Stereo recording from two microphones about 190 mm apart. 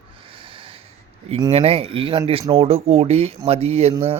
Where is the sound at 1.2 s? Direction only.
30° right (ahead or behind).